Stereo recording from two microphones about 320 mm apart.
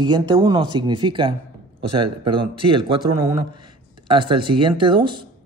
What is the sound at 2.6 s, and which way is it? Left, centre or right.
A man's voice, centre.